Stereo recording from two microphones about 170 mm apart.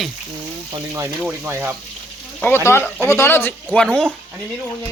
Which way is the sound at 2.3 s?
10° left (ahead or behind).